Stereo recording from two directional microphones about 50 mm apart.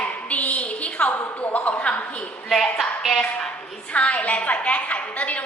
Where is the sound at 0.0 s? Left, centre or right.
Left.